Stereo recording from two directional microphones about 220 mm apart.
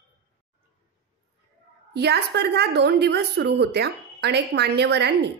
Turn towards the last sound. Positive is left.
turn(degrees=-50)  # may be behind; listen again after turning